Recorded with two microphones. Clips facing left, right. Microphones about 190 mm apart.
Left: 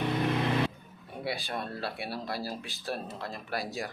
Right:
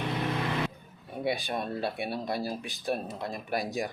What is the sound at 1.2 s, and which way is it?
Speech, 20° right (ahead or behind).